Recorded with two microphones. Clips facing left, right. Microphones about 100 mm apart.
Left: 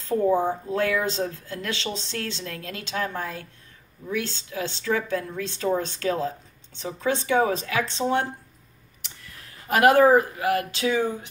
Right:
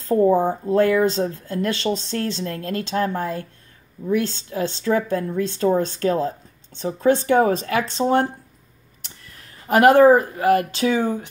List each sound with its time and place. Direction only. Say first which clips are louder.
0.0 s speech: right 5 dB; 40° right (ahead or behind)
9.7 s speech: right 4 dB; 30° right (ahead or behind)